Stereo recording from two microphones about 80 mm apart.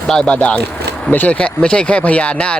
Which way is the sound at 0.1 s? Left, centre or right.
Centre.